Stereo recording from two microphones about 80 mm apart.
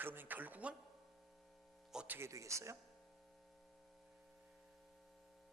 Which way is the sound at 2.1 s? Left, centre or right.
Right.